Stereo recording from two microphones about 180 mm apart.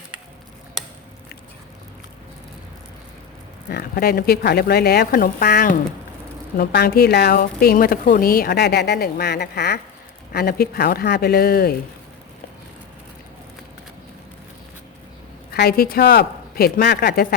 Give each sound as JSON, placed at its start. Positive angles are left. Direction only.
{"t": 3.7, "sound": "speech", "side_deg": 60}
{"t": 15.5, "sound": "speech", "side_deg": 60}